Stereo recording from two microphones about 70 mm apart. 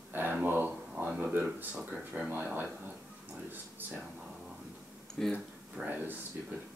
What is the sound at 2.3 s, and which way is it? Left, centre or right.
Speech, right.